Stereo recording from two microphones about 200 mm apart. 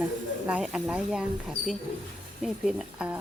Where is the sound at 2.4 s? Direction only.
5° right (ahead or behind).